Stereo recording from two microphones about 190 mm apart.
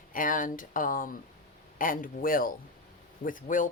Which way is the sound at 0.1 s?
45° left (ahead or behind).